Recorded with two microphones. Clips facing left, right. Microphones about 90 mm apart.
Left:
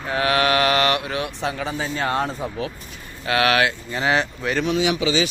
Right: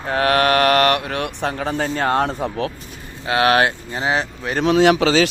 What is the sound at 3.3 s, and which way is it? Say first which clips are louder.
Speech: right 3 dB; 30° right (ahead or behind).